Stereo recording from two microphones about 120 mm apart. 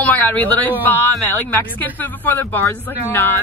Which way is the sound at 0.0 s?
15° left (ahead or behind).